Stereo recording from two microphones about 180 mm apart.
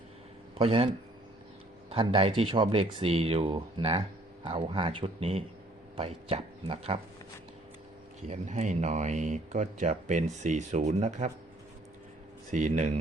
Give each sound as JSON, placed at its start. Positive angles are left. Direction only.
{"t": 0.6, "sound": "speech", "side_deg": -30}
{"t": 8.3, "sound": "speech", "side_deg": -40}
{"t": 12.5, "sound": "speech", "side_deg": -40}